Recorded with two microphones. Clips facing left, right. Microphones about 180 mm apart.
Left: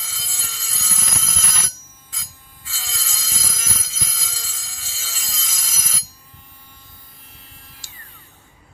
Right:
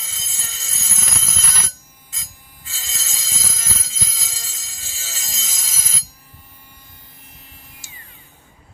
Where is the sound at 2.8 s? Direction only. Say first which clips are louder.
Left 1 dB; 25° right (ahead or behind).